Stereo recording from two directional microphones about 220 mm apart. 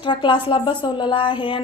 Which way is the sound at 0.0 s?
20° left (ahead or behind).